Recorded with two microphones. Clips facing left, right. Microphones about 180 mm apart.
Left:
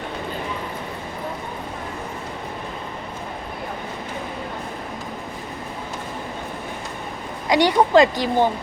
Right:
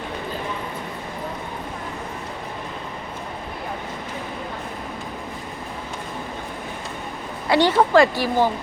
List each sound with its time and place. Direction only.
7.4 s speech: 15° left (ahead or behind)